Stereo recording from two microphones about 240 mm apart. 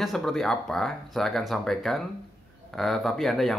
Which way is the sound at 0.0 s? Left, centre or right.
Centre.